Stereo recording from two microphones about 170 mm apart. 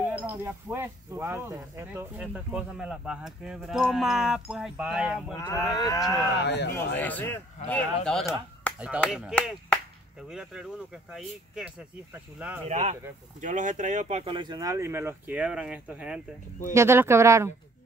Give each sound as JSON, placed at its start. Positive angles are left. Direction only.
{"t": 0.1, "sound": "speech", "side_deg": -10}
{"t": 5.3, "sound": "speech", "side_deg": 20}
{"t": 6.3, "sound": "speech", "side_deg": 80}
{"t": 7.0, "sound": "speech", "side_deg": 10}
{"t": 8.7, "sound": "speech", "side_deg": -10}
{"t": 12.6, "sound": "speech", "side_deg": -40}